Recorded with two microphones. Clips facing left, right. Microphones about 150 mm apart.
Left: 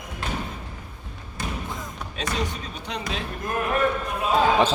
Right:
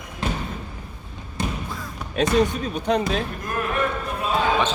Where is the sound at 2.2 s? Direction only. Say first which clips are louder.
Right 10 dB; 55° right (ahead or behind).